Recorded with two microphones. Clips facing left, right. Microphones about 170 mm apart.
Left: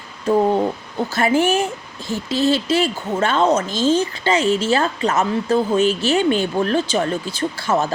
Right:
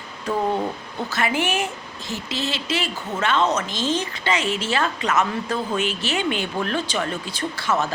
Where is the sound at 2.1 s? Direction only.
50° left (ahead or behind).